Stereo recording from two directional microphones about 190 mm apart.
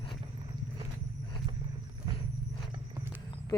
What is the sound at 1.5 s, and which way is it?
Wild animals, 25° right (ahead or behind).